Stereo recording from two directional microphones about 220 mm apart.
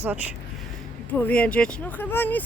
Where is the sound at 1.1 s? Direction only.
5° left (ahead or behind).